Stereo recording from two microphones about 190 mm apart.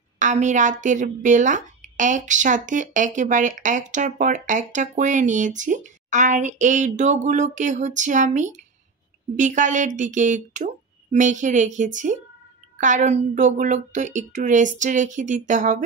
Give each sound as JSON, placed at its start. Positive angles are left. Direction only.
{"t": 0.2, "sound": "speech", "side_deg": -40}